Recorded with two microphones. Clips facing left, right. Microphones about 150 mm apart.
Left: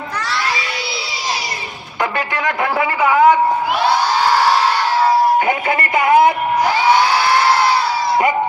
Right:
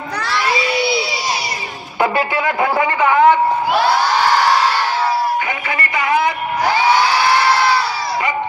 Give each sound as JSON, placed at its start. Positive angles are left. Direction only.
{"t": 2.0, "sound": "music", "side_deg": -5}
{"t": 2.7, "sound": "a sound", "side_deg": 10}
{"t": 5.5, "sound": "music", "side_deg": 50}